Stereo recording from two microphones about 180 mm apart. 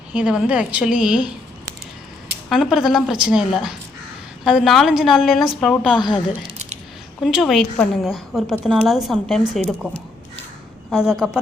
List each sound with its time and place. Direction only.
0.1 s a woman's voice: 5° right (ahead or behind)
2.5 s a woman's voice: centre (ahead or behind)
6.0 s speech: 25° left (ahead or behind)
7.2 s a woman's voice: centre (ahead or behind)
10.9 s a woman's voice: 5° right (ahead or behind)